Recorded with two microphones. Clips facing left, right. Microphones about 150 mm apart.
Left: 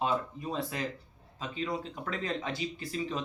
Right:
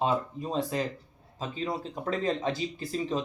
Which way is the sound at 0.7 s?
30° right (ahead or behind).